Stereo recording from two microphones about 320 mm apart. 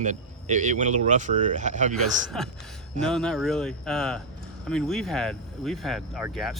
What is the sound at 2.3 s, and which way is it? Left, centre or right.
Speech, centre.